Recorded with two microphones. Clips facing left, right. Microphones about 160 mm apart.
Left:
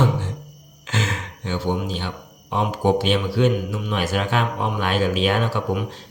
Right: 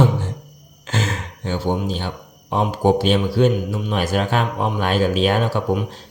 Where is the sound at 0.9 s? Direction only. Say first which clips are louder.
Right 2 dB; 40° right (ahead or behind).